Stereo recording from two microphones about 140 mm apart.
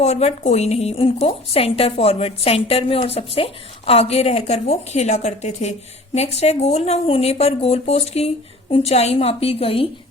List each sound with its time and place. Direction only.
0.0 s a woman's voice: 50° left (ahead or behind)